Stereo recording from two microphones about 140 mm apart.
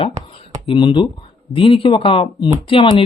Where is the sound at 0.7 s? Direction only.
35° left (ahead or behind).